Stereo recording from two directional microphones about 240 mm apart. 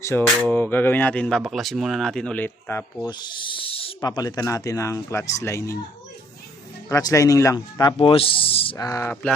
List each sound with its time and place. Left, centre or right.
0.0 s speech: centre
3.1 s owl: centre
6.8 s owl: centre